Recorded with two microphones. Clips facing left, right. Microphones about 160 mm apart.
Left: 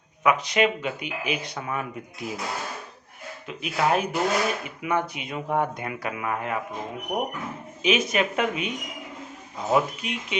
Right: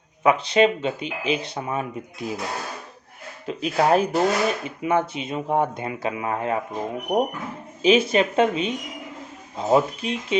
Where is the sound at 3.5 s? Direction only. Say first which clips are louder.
Right 5 dB; 35° right (ahead or behind).